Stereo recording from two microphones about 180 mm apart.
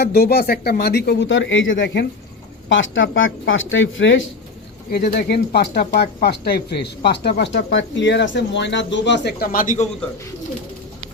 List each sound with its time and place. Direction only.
0.0 s speech: 60° left (ahead or behind); by 2.0 s 75° left (ahead or behind)
2.6 s speech: 90° left
4.9 s speech: 60° left (ahead or behind); by 9.9 s 45° left (ahead or behind)